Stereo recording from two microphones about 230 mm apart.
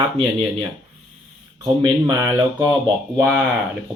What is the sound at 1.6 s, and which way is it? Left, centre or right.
Speech, centre.